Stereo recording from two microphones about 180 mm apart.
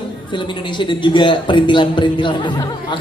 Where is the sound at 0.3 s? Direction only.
25° left (ahead or behind).